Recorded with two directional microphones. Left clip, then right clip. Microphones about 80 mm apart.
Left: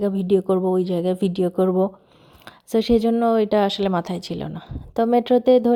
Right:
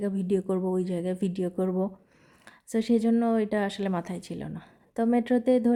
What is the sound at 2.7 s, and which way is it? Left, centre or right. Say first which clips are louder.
Speech: left 8 dB; left.